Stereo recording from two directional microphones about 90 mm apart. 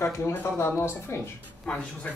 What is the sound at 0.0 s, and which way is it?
Speech, 25° left (ahead or behind).